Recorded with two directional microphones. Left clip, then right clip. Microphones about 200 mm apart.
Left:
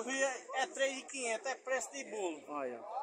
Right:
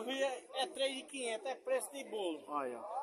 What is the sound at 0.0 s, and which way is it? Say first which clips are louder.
A man's voice: left 2 dB; 15° right (ahead or behind).